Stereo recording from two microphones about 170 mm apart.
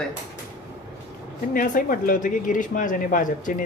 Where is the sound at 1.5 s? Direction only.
50° left (ahead or behind).